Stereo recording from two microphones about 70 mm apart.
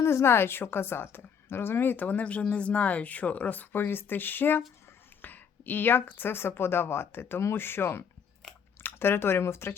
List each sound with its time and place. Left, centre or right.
0.0 s a woman's voice: left